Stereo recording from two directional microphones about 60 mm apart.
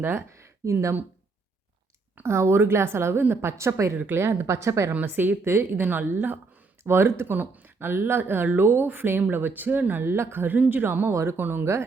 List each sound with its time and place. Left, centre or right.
0.0 s speech: right
2.2 s a woman's voice: right
3.9 s a woman's voice: right
4.9 s speech: right
5.5 s a woman's voice: right
5.8 s speech: right
6.8 s speech: right
11.1 s a woman's voice: right
11.3 s speech: right